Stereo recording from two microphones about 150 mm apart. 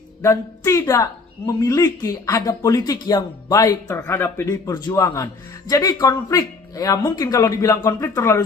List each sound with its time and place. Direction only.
0.2 s a woman's voice: 20° left (ahead or behind)